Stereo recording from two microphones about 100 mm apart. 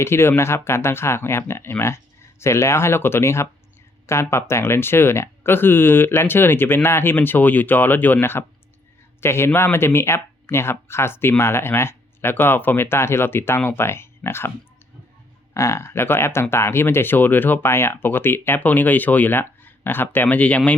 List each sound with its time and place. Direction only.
0.0 s speech: 25° left (ahead or behind)
15.5 s speech: 25° left (ahead or behind)